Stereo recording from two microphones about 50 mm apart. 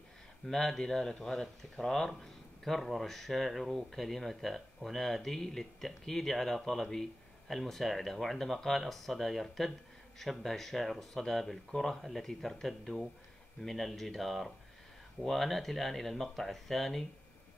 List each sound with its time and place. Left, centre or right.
0.5 s speech: centre